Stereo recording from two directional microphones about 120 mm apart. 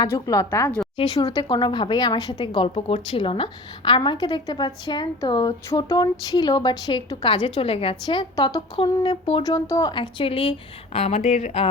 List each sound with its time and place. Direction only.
0.1 s speech: 25° left (ahead or behind)
0.9 s a sound: 45° left (ahead or behind)
1.3 s a woman's voice: 40° left (ahead or behind)
2.4 s a woman's voice: 50° left (ahead or behind)
8.4 s a woman's voice: 30° left (ahead or behind)
8.7 s a sound: 45° left (ahead or behind)
9.4 s speech: 30° left (ahead or behind)
9.9 s a sound: 45° left (ahead or behind)
10.9 s speech: 60° left (ahead or behind)